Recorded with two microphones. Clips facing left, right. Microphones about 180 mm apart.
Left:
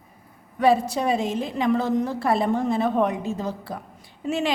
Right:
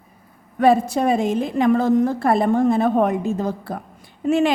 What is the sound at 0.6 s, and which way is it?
A woman's voice, 50° right (ahead or behind).